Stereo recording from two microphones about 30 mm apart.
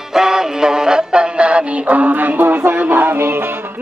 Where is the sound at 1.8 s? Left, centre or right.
Right.